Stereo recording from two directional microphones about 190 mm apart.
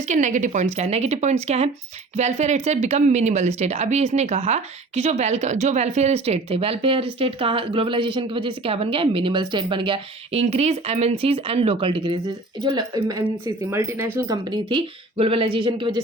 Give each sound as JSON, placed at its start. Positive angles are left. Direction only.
{"t": 0.0, "sound": "a woman's voice", "side_deg": -40}
{"t": 14.7, "sound": "a woman's voice", "side_deg": -30}